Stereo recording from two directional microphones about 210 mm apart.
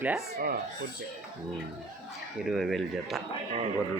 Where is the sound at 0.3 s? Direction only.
45° right (ahead or behind).